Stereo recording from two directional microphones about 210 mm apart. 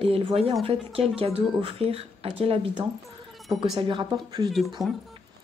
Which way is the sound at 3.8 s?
20° right (ahead or behind).